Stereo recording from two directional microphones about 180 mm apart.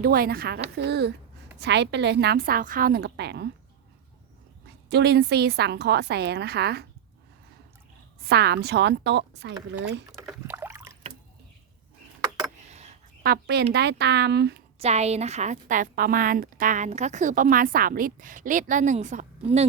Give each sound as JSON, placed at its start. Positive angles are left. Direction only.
{"t": 0.0, "sound": "a woman's voice", "side_deg": -60}
{"t": 4.6, "sound": "a woman's voice", "side_deg": -65}
{"t": 8.3, "sound": "a woman's voice", "side_deg": -65}
{"t": 10.1, "sound": "rowboat", "side_deg": 0}
{"t": 10.5, "sound": "a sound", "side_deg": -10}
{"t": 12.6, "sound": "a sound", "side_deg": -40}
{"t": 13.2, "sound": "a woman's voice", "side_deg": -65}
{"t": 14.8, "sound": "a woman's voice", "side_deg": -35}